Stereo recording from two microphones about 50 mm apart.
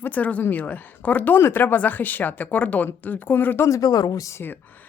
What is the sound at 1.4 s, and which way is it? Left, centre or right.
Speech, left.